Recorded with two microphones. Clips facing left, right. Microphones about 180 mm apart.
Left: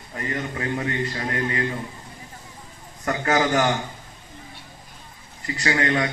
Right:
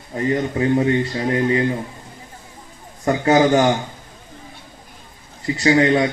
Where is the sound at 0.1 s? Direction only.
25° right (ahead or behind).